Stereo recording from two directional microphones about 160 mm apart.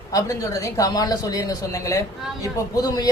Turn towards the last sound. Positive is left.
turn(degrees=20)  # may be behind; listen again after turning